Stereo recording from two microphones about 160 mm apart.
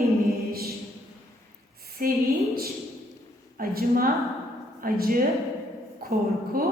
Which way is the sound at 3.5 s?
65° right (ahead or behind).